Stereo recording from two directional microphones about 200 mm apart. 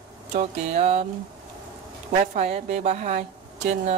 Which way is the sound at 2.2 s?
30° right (ahead or behind).